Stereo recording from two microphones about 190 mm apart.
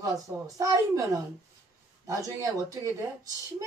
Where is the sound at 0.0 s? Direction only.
15° right (ahead or behind).